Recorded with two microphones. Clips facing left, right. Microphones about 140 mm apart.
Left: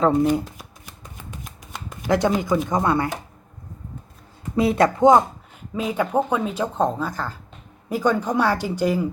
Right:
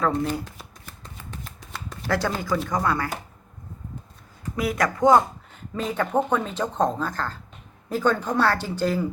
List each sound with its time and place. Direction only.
0.2 s shuffling cards: 20° left (ahead or behind)
4.5 s speech: 30° left (ahead or behind)
5.7 s speech: 10° left (ahead or behind)